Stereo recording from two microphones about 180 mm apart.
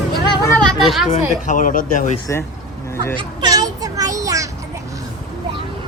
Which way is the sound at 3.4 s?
20° right (ahead or behind).